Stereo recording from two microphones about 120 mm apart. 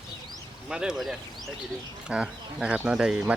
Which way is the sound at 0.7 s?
5° right (ahead or behind).